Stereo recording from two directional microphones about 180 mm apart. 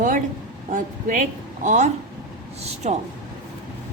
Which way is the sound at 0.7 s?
50° right (ahead or behind).